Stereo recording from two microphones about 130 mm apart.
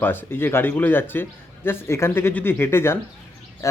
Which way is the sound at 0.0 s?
15° left (ahead or behind).